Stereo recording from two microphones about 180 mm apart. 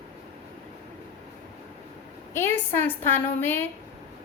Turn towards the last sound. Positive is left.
turn(degrees=10)  # may be behind; listen again after turning